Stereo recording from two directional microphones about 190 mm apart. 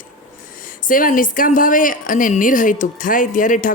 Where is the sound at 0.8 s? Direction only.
45° left (ahead or behind).